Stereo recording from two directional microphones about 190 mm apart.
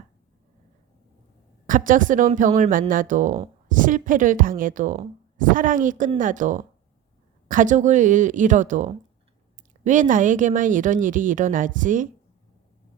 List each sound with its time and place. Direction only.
1.6 s speech: 45° right (ahead or behind)